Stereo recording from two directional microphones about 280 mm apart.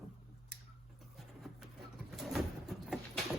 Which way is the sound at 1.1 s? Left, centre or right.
Centre.